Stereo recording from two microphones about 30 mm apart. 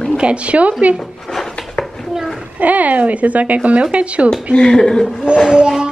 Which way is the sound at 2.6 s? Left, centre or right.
Right.